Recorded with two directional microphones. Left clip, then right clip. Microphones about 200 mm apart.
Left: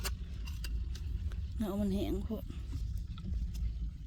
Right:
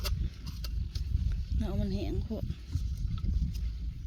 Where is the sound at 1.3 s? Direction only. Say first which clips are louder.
Left 2 dB; 20° left (ahead or behind).